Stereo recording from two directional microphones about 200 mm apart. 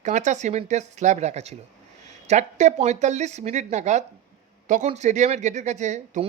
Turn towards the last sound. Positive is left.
turn(degrees=-35)  # may be behind; listen again after turning